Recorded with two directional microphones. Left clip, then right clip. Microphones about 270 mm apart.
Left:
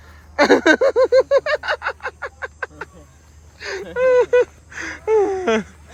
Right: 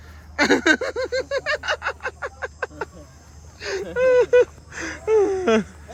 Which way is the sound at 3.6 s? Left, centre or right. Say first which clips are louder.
Left 2 dB; centre.